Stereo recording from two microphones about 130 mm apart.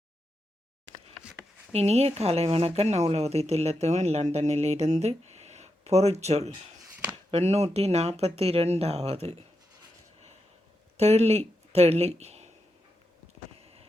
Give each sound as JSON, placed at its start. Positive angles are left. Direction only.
{"t": 1.7, "sound": "speech", "side_deg": -55}
{"t": 10.9, "sound": "speech", "side_deg": -55}
{"t": 13.6, "sound": "a sound", "side_deg": -50}